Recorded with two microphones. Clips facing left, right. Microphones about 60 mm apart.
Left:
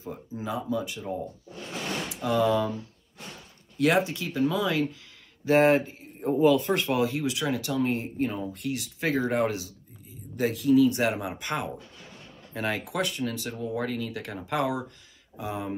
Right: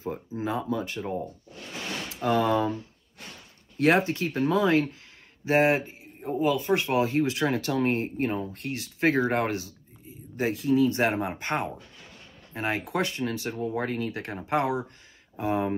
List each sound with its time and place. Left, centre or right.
0.0 s speech: right
3.7 s speech: right
5.6 s speech: centre
5.9 s speech: centre
6.8 s speech: right
10.3 s speech: right
15.3 s speech: right